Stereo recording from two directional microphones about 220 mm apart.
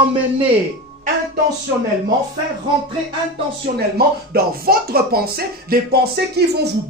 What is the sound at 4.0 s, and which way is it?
Speech, 45° right (ahead or behind).